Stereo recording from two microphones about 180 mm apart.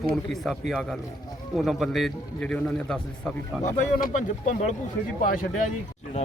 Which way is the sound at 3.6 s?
40° left (ahead or behind).